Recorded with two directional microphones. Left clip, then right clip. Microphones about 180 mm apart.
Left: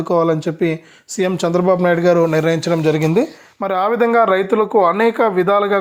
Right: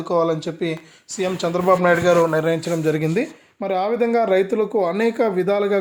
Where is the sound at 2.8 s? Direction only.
Centre (ahead or behind).